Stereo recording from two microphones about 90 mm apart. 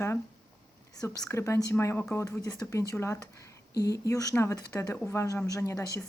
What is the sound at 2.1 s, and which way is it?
Speech, 40° left (ahead or behind).